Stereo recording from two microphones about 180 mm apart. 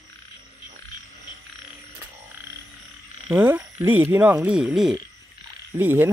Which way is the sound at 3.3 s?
10° right (ahead or behind).